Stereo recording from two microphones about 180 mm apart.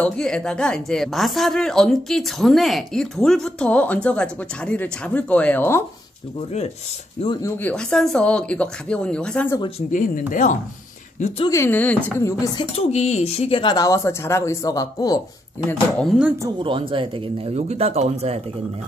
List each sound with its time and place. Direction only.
0.0 s a woman's voice: 5° left (ahead or behind)
7.4 s a woman's voice: 5° left (ahead or behind)
9.8 s speech: 45° left (ahead or behind)
11.4 s speech: 15° left (ahead or behind)
12.7 s speech: 35° left (ahead or behind)
16.0 s a woman's voice: 5° right (ahead or behind)
16.4 s speech: 25° right (ahead or behind)